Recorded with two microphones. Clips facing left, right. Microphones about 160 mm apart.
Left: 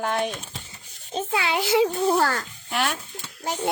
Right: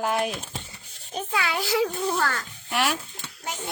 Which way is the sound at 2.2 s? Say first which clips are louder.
Left 4 dB; 35° left (ahead or behind).